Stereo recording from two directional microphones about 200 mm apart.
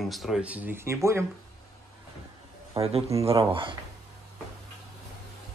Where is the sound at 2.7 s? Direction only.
30° right (ahead or behind).